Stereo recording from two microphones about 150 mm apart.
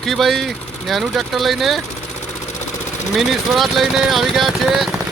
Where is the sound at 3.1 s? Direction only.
Centre (ahead or behind).